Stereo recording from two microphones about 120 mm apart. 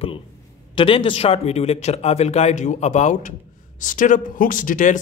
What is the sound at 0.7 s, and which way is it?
Speech, 45° left (ahead or behind).